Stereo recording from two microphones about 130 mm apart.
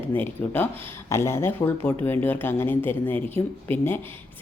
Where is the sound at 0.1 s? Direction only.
15° left (ahead or behind).